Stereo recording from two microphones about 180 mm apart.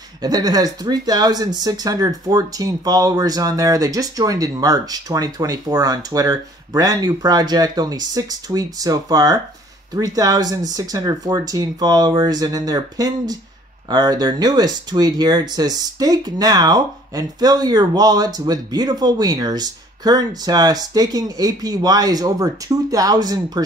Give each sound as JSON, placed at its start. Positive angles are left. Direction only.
{"t": 0.2, "sound": "speech", "side_deg": -20}